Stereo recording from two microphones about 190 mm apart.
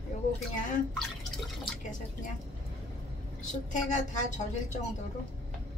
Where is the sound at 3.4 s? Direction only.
40° left (ahead or behind).